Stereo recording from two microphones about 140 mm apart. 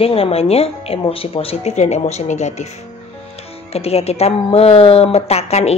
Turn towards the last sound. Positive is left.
turn(degrees=50)  # may be behind; listen again after turning